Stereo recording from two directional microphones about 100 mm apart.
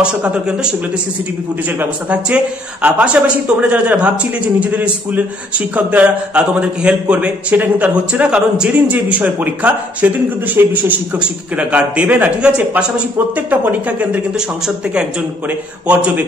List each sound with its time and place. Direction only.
0.0 s a man's voice: 10° right (ahead or behind)
1.8 s a man's voice: 15° right (ahead or behind)
15.9 s a man's voice: 15° right (ahead or behind)